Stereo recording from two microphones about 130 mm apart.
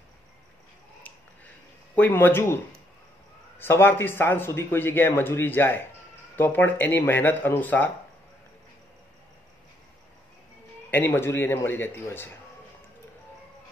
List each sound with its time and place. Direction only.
2.0 s a man's voice: 15° left (ahead or behind)
10.9 s a man's voice: 15° left (ahead or behind)